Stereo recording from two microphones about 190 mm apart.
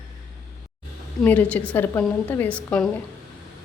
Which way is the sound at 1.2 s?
10° left (ahead or behind).